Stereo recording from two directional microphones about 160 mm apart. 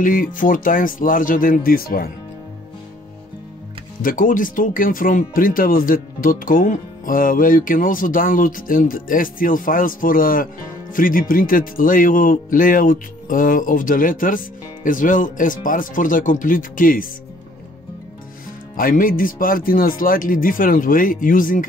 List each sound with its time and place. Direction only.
0.0 s speech: 60° left (ahead or behind)
4.0 s speech: 55° left (ahead or behind)
18.8 s speech: 60° left (ahead or behind)